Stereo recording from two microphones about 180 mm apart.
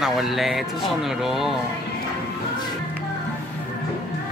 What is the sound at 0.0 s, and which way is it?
Speech, centre (ahead or behind).